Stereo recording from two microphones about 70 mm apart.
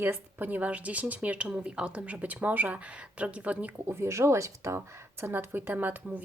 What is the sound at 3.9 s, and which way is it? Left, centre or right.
Speech, right.